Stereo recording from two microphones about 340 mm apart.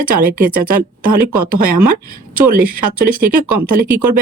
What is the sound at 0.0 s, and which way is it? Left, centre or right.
Speech, right.